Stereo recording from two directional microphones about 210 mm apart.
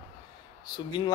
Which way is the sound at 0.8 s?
20° left (ahead or behind).